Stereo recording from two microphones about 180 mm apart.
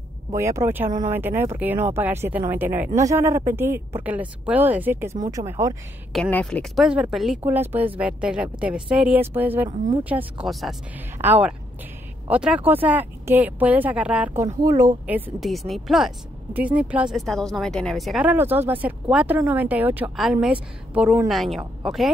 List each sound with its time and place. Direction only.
0.3 s speech: 15° right (ahead or behind)
6.3 s speech: 5° left (ahead or behind); by 15.0 s 20° right (ahead or behind)
15.0 s speech: 10° right (ahead or behind)